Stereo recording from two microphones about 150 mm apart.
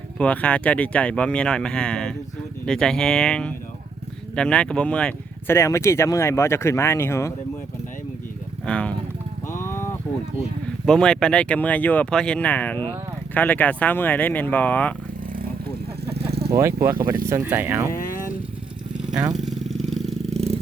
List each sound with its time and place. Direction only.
0.2 s speech: 10° left (ahead or behind)
5.5 s speech: 20° left (ahead or behind)
8.6 s speech: 5° left (ahead or behind)
9.5 s a sound: 20° left (ahead or behind)
10.8 s speech: 5° left (ahead or behind)
16.5 s speech: 20° right (ahead or behind)
17.9 s speech: 65° left (ahead or behind)
19.4 s vehicle: centre (ahead or behind)
19.9 s a sound: centre (ahead or behind)